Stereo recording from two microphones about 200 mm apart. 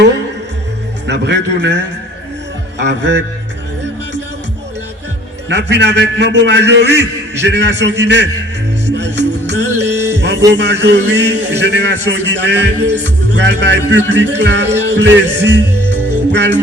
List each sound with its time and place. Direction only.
1.0 s a man's voice: 60° right (ahead or behind)
5.5 s a man's voice: 60° right (ahead or behind)
8.9 s music: 60° right (ahead or behind)
10.5 s a man's voice: 60° right (ahead or behind)